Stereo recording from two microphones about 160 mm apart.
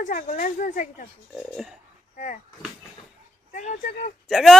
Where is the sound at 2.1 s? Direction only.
50° left (ahead or behind).